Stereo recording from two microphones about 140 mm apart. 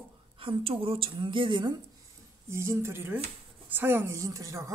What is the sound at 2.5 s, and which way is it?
Speech, 20° right (ahead or behind).